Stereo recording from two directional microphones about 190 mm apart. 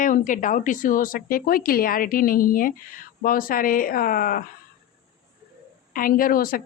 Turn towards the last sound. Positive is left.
turn(degrees=50)  # may be behind; listen again after turning